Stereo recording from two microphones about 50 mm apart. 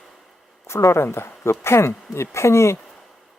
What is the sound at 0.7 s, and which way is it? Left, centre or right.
Speech, left.